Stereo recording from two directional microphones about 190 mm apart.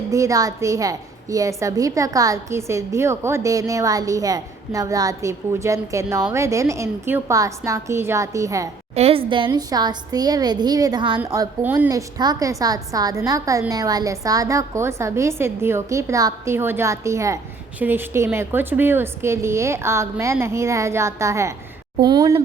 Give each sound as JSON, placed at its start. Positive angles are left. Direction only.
{"t": 0.1, "sound": "a woman's voice", "side_deg": -15}
{"t": 9.0, "sound": "a woman's voice", "side_deg": -30}